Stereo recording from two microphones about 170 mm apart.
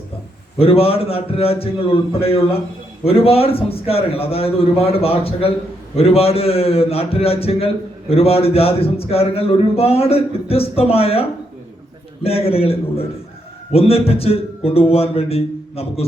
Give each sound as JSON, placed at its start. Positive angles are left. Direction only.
{"t": 0.6, "sound": "a man's voice", "side_deg": 35}